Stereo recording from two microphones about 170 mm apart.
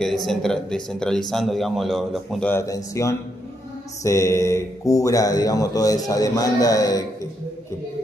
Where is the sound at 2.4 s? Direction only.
15° left (ahead or behind).